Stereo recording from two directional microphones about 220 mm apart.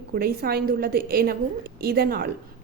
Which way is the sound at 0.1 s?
45° right (ahead or behind).